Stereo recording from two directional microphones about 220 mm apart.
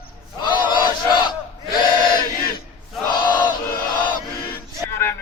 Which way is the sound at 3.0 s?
20° left (ahead or behind).